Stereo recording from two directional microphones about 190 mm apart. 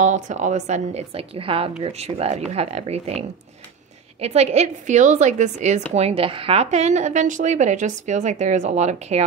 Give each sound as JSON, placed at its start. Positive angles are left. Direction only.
{"t": 0.0, "sound": "a woman's voice", "side_deg": -40}